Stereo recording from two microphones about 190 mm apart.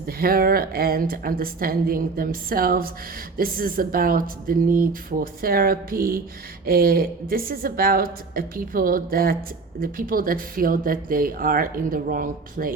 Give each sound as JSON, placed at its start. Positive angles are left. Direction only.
{"t": 0.0, "sound": "speech", "side_deg": -50}